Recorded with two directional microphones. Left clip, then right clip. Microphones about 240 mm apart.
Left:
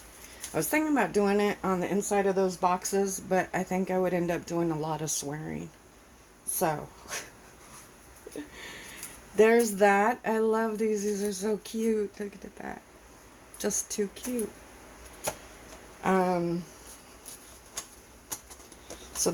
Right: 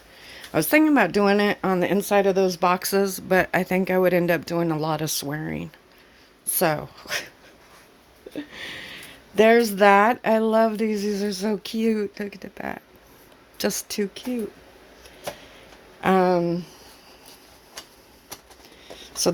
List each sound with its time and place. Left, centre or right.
0.5 s speech: right
9.3 s speech: right
16.0 s speech: right